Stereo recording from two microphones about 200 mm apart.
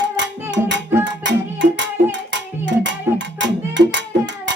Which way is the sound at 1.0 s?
60° right (ahead or behind).